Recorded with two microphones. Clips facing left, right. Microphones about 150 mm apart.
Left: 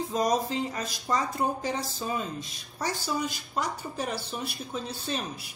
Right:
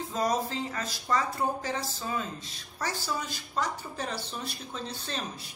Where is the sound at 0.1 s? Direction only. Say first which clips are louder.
Left 2 dB; 15° left (ahead or behind).